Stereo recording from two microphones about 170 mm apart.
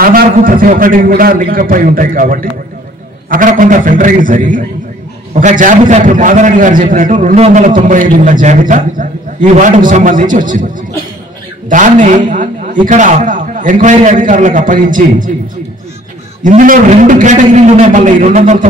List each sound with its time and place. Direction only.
0.0 s a man's voice: 55° right (ahead or behind)
11.7 s a man's voice: 50° right (ahead or behind)
16.4 s a man's voice: 50° right (ahead or behind)